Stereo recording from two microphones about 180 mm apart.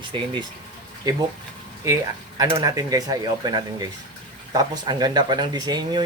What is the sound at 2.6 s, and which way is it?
Speech, 20° right (ahead or behind).